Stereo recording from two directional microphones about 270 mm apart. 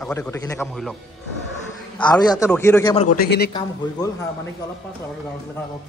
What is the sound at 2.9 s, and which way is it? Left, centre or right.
Speech, left.